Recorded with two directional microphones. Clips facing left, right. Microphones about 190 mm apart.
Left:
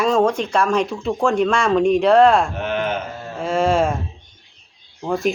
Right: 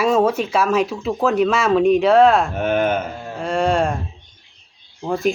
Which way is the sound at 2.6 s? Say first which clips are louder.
Right 4 dB; 50° right (ahead or behind).